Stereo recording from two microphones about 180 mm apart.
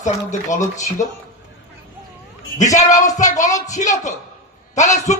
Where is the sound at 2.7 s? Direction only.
45° left (ahead or behind).